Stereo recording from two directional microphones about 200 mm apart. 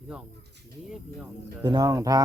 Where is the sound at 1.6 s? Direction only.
20° right (ahead or behind).